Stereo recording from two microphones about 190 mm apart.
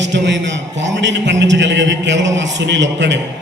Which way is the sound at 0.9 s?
70° right (ahead or behind).